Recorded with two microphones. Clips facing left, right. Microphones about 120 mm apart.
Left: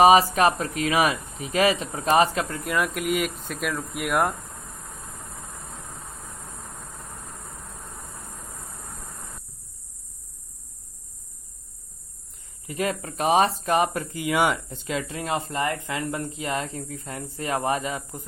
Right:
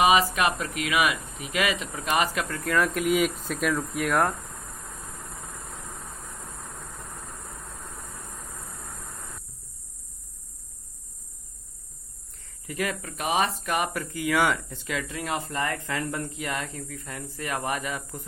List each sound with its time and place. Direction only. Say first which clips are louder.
0.0 s speech: left 5 dB; 35° left (ahead or behind)
2.5 s speech: right 1 dB; 15° left (ahead or behind)
12.6 s speech: left 3 dB; 25° left (ahead or behind)